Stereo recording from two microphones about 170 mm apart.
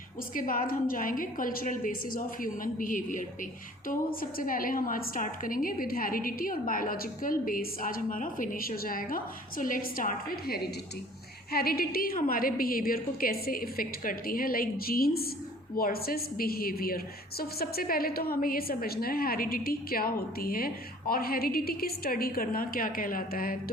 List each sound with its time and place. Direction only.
0.3 s a woman's voice: 55° left (ahead or behind)